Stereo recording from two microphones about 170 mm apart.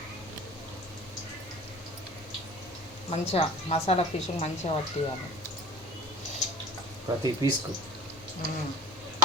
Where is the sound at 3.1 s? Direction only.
35° left (ahead or behind).